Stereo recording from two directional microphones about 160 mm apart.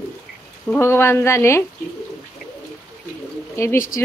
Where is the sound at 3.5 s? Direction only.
15° left (ahead or behind).